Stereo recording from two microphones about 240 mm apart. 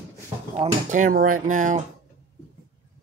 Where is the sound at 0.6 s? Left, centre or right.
Right.